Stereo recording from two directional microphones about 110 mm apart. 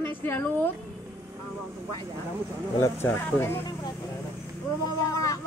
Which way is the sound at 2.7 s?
25° left (ahead or behind).